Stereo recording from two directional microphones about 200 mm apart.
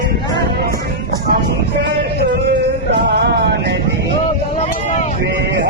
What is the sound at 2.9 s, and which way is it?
Music, 55° right (ahead or behind).